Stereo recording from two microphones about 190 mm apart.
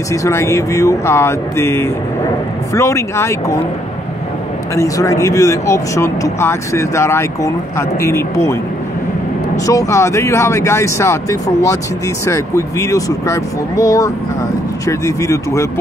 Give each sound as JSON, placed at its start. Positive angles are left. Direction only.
{"t": 0.1, "sound": "speech", "side_deg": 15}
{"t": 4.7, "sound": "speech", "side_deg": 15}
{"t": 9.7, "sound": "speech", "side_deg": 15}